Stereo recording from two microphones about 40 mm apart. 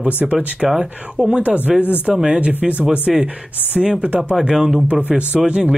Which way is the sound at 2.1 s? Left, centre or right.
Centre.